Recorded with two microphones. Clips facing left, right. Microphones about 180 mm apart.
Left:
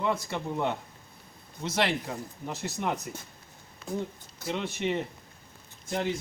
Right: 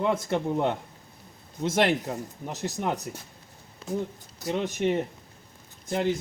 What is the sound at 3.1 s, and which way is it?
Speech, centre (ahead or behind).